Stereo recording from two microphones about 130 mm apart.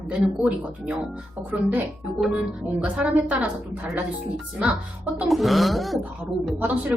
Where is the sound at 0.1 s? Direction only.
10° right (ahead or behind).